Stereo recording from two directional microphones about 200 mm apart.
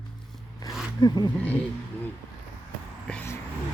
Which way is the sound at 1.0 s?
20° left (ahead or behind).